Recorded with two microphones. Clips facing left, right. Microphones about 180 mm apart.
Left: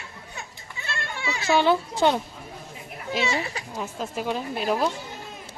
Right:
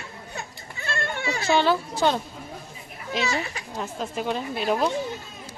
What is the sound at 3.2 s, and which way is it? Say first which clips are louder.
Speech: even; 25° left (ahead or behind).